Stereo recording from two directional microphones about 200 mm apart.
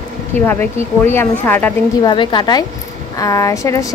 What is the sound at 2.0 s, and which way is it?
A woman's voice, 20° left (ahead or behind).